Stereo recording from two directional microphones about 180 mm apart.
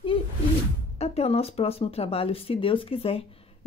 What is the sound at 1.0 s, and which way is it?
Speech, 35° left (ahead or behind).